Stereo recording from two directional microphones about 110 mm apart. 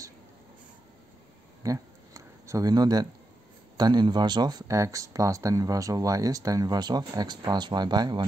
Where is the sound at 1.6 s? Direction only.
30° right (ahead or behind).